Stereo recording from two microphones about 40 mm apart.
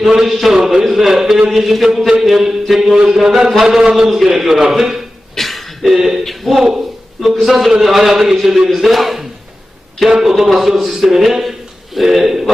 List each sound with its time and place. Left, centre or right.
0.0 s a man's voice: centre
5.3 s a sound: centre
5.8 s a man's voice: centre
6.2 s a man's voice: centre
6.6 s a man's voice: centre
7.4 s a man's voice: centre